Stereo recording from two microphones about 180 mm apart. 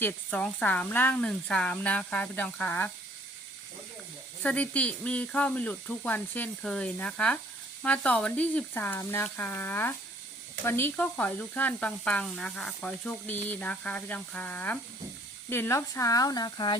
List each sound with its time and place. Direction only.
0.0 s speech: 5° left (ahead or behind)
4.4 s speech: 10° left (ahead or behind); by 16.7 s 25° left (ahead or behind)